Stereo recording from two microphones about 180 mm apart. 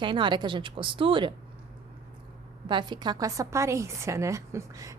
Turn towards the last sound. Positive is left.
turn(degrees=-20)  # may be behind; listen again after turning